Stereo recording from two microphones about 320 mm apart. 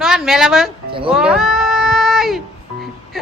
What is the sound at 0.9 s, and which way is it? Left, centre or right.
Speech, centre.